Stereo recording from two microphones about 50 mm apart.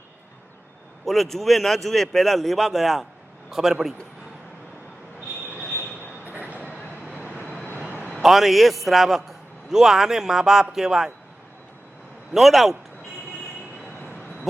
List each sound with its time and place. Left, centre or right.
1.0 s a man's voice: centre
6.0 s train: right
7.0 s vehicle: right
8.2 s a man's voice: centre
12.3 s a man's voice: centre